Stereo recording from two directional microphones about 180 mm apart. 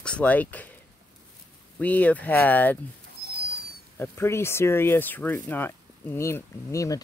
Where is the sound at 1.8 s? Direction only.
10° left (ahead or behind).